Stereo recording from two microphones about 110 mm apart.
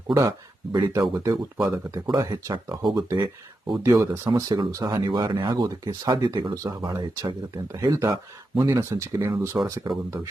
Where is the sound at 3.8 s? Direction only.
25° right (ahead or behind).